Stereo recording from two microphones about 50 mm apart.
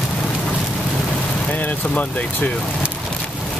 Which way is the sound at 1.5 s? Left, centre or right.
Left.